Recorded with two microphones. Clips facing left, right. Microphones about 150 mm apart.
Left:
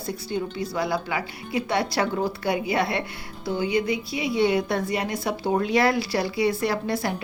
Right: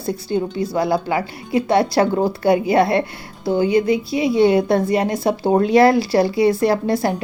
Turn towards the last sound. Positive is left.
turn(degrees=-35)  # may be behind; listen again after turning